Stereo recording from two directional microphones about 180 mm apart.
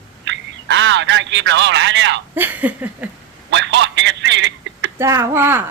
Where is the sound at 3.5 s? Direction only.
80° right.